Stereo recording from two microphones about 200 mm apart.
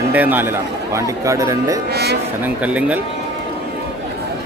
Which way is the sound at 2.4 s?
5° right (ahead or behind).